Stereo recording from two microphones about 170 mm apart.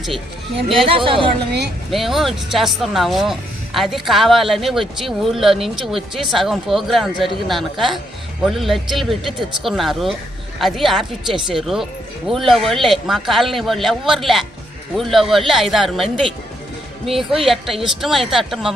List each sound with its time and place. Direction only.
0.9 s speech: 30° right (ahead or behind)
1.9 s speech: centre (ahead or behind)